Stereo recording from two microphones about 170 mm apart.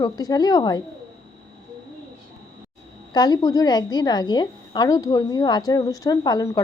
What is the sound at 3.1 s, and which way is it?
A woman's voice, 25° left (ahead or behind).